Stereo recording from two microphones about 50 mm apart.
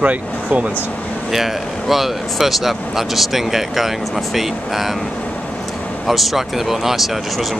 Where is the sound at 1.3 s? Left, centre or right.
Centre.